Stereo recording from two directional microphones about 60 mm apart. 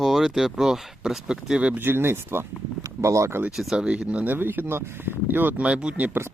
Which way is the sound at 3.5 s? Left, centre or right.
Centre.